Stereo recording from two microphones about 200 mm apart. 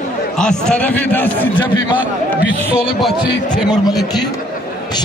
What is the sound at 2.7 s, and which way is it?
Music, centre (ahead or behind).